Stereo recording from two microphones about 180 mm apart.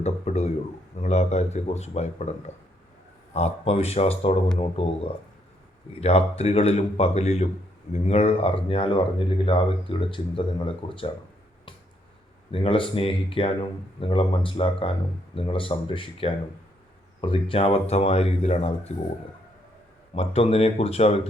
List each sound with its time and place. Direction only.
0.0 s a man's voice: 40° left (ahead or behind)
3.3 s a man's voice: 35° left (ahead or behind)
6.0 s a man's voice: 35° left (ahead or behind)
12.5 s a man's voice: 30° left (ahead or behind)
20.1 s a man's voice: 35° left (ahead or behind)